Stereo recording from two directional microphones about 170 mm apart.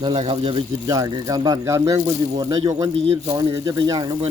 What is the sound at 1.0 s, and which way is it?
Speech, 20° right (ahead or behind).